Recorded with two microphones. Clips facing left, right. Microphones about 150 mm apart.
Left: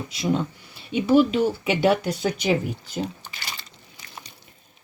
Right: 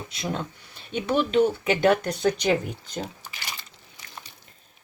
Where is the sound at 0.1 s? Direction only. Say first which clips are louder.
Left 7 dB; centre (ahead or behind).